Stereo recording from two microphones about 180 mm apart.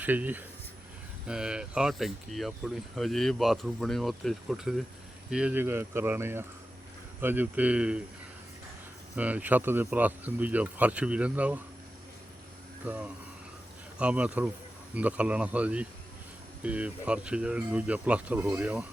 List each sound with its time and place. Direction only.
0.0 s speech: 10° right (ahead or behind)
9.1 s speech: 10° right (ahead or behind)
12.8 s speech: 5° right (ahead or behind)